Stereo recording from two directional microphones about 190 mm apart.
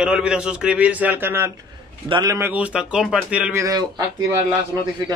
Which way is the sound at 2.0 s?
25° right (ahead or behind).